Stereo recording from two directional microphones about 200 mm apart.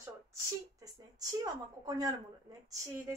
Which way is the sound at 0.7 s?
20° right (ahead or behind).